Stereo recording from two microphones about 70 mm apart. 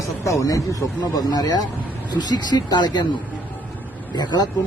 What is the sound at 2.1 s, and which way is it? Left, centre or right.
Speech, left.